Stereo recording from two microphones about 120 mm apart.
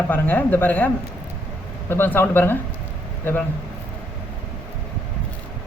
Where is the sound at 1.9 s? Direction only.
15° left (ahead or behind).